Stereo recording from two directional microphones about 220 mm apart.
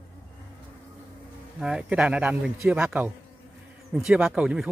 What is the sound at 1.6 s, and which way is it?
Speech, 5° right (ahead or behind).